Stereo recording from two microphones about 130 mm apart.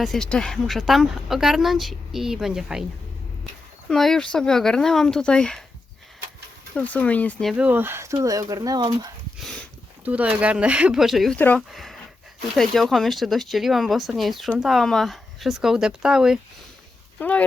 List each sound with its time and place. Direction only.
0.0 s speech: 5° left (ahead or behind)
3.8 s speech: centre (ahead or behind)
6.7 s speech: 10° left (ahead or behind)
7.5 s speech: 10° right (ahead or behind); by 8.8 s 30° right (ahead or behind)
10.0 s speech: 10° right (ahead or behind)
11.3 s speech: 15° left (ahead or behind)
11.7 s speech: centre (ahead or behind)
17.2 s speech: 10° left (ahead or behind)